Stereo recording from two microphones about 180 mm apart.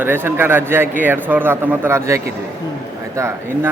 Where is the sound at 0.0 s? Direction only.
10° right (ahead or behind).